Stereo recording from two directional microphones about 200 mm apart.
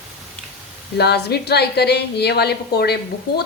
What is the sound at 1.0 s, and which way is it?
A woman's voice, 55° left (ahead or behind).